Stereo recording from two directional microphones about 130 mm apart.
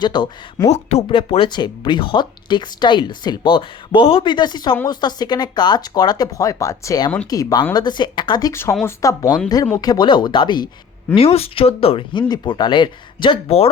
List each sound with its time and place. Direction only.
0.0 s speech: 35° left (ahead or behind)
0.7 s speech: 60° left (ahead or behind)
1.0 s speech: 40° left (ahead or behind)
11.1 s speech: 50° left (ahead or behind)